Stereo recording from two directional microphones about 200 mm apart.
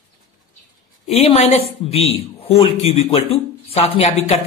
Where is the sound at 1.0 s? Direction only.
30° left (ahead or behind).